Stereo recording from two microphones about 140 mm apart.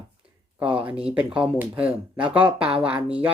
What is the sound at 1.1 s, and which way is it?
Speech, 10° right (ahead or behind).